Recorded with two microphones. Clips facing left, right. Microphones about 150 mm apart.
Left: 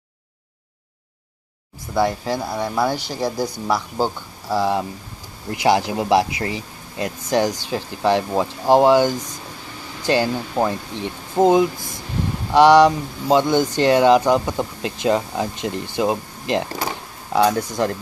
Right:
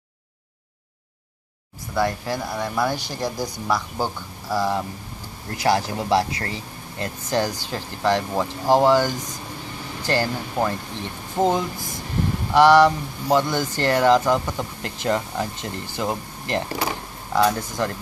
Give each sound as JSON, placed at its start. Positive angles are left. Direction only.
{"t": 2.0, "sound": "speech", "side_deg": 10}